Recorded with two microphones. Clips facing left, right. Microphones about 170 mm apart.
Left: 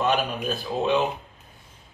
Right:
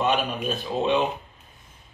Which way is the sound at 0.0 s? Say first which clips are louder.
Even; centre (ahead or behind).